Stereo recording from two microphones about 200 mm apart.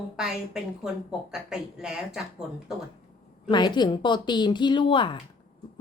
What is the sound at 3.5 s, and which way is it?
Speech, 20° left (ahead or behind).